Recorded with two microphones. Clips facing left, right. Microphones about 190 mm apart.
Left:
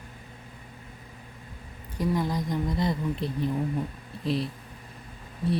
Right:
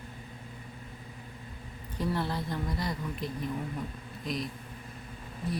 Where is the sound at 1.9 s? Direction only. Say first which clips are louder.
Left 4 dB; 10° left (ahead or behind); by 4.5 s 30° left (ahead or behind).